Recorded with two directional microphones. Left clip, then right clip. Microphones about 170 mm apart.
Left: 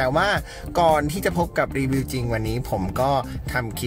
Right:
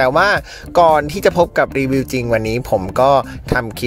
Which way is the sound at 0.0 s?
40° right (ahead or behind).